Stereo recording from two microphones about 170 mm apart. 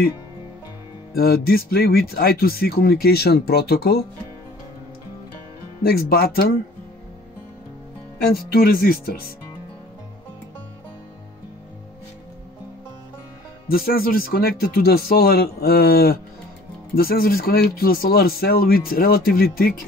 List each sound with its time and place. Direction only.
1.1 s speech: 65° left (ahead or behind)
5.8 s speech: 65° left (ahead or behind)
8.2 s speech: 60° left (ahead or behind)
13.7 s speech: 60° left (ahead or behind)